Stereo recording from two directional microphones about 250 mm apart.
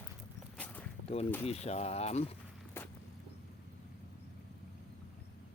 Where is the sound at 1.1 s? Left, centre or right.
Left.